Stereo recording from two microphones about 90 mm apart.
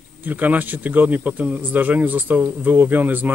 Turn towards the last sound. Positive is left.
turn(degrees=-20)  # may be behind; listen again after turning